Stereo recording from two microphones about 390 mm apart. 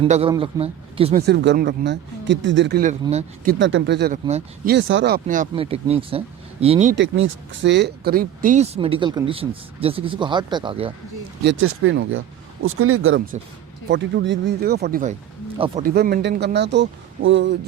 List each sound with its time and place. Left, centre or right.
0.0 s speech: centre
11.4 s speech: right